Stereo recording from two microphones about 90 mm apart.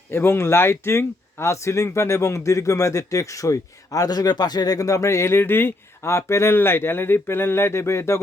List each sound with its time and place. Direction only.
0.1 s speech: 25° left (ahead or behind)